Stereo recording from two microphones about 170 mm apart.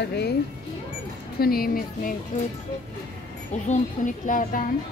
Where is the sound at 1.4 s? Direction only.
60° left (ahead or behind).